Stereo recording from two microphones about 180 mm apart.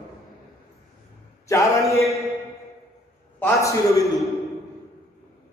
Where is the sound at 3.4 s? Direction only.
15° left (ahead or behind).